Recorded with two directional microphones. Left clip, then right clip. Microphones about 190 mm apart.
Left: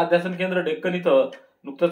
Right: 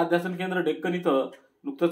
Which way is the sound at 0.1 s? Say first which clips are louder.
Left 5 dB; 45° right (ahead or behind).